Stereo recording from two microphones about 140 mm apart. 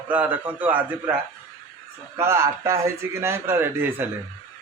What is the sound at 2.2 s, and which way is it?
A man's voice, 20° right (ahead or behind).